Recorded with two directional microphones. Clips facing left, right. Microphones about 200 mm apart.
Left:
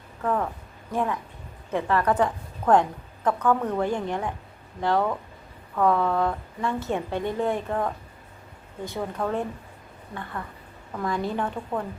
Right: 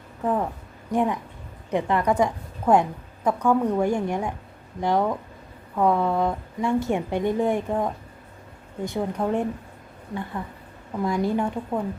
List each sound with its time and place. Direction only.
0.2 s a woman's voice: 15° right (ahead or behind)
10.9 s a woman's voice: 15° right (ahead or behind)